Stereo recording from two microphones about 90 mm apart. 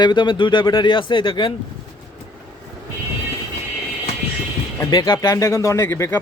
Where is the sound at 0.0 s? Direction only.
60° left (ahead or behind).